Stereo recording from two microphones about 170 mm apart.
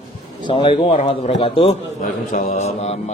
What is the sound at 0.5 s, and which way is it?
Speech, 30° left (ahead or behind).